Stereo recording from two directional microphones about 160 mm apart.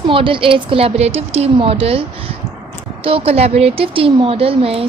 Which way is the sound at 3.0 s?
35° right (ahead or behind).